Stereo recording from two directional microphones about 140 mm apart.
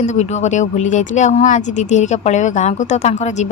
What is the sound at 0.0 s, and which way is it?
Speech, 55° left (ahead or behind).